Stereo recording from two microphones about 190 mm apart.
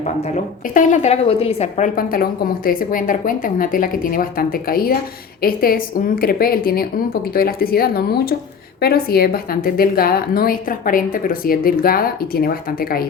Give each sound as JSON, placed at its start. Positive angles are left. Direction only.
{"t": 0.0, "sound": "a woman's voice", "side_deg": 40}
{"t": 2.0, "sound": "a woman's voice", "side_deg": 50}